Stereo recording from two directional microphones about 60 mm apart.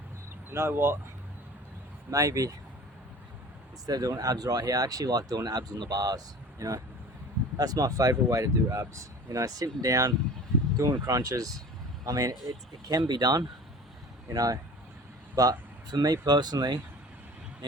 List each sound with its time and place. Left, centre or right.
0.5 s speech: right
2.0 s speech: right
3.8 s speech: right
7.5 s speech: right
14.3 s speech: right
15.4 s speech: right